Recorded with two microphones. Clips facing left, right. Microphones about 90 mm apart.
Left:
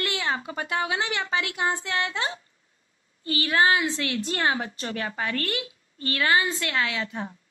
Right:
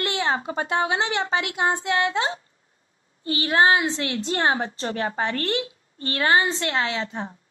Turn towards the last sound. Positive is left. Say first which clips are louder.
# right 2 dB
turn(degrees=-30)  # may be behind; listen again after turning